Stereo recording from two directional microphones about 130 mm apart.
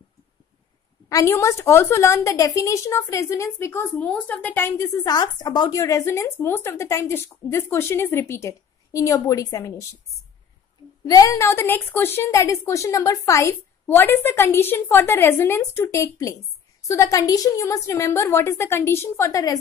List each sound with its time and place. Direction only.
1.0 s speech: 25° left (ahead or behind)
11.1 s speech: 25° left (ahead or behind)